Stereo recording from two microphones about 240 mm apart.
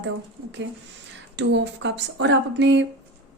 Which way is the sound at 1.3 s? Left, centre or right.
Right.